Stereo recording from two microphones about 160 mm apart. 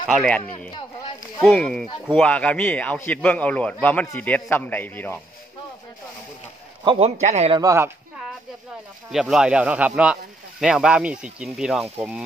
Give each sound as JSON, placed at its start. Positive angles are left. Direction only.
{"t": 0.0, "sound": "speech", "side_deg": 0}
{"t": 1.4, "sound": "a man's voice", "side_deg": 5}
{"t": 6.8, "sound": "a man's voice", "side_deg": -30}
{"t": 7.2, "sound": "speech", "side_deg": -45}
{"t": 7.5, "sound": "speech", "side_deg": -20}
{"t": 9.1, "sound": "speech", "side_deg": -5}